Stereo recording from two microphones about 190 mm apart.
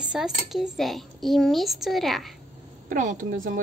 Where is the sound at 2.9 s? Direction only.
40° right (ahead or behind).